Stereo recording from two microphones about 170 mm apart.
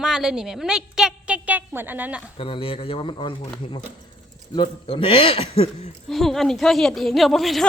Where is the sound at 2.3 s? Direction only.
35° left (ahead or behind).